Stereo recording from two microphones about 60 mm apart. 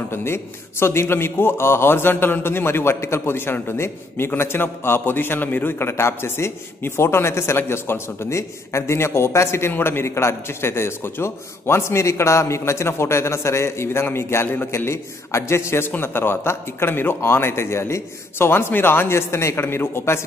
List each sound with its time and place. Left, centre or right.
0.1 s a man's voice: left
14.9 s a man's voice: left